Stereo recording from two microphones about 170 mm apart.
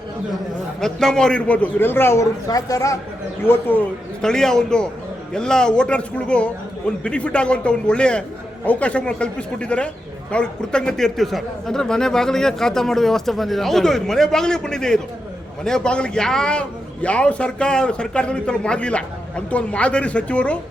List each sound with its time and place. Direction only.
0.8 s a man's voice: 5° left (ahead or behind)